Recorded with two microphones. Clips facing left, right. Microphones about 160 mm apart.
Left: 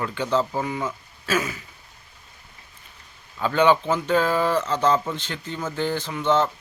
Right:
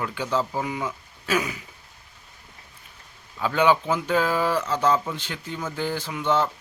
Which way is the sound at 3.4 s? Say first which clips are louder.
Left 2 dB; 10° right (ahead or behind).